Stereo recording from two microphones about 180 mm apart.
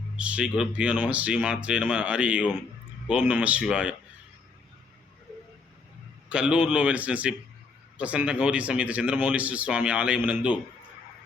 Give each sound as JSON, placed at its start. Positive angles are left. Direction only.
{"t": 0.2, "sound": "speech", "side_deg": -5}
{"t": 6.2, "sound": "speech", "side_deg": -5}